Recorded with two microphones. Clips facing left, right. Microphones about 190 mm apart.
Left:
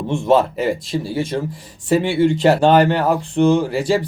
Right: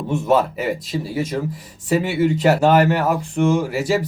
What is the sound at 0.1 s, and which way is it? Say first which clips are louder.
Speech: left 2 dB; 25° left (ahead or behind).